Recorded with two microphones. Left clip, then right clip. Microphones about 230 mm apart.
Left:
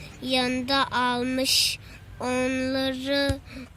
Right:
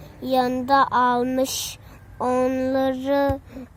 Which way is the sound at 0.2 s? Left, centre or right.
Right.